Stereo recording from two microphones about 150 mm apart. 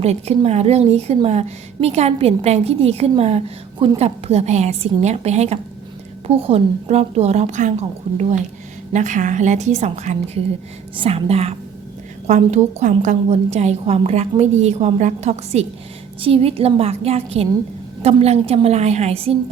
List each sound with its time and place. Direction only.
0.0 s a woman's voice: 45° right (ahead or behind)